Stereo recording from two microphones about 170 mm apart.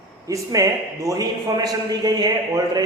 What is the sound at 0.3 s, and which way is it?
Speech, 20° right (ahead or behind).